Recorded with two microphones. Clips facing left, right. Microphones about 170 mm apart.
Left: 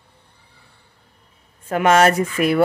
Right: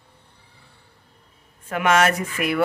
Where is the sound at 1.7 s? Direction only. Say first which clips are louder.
Left 4 dB; 35° left (ahead or behind).